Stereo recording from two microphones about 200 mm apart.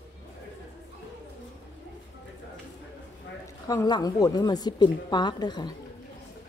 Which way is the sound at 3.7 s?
20° left (ahead or behind).